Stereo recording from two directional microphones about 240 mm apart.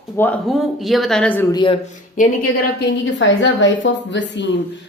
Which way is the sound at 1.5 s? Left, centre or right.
Centre.